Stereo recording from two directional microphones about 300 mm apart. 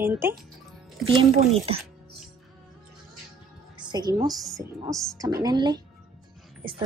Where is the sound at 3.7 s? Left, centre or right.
Centre.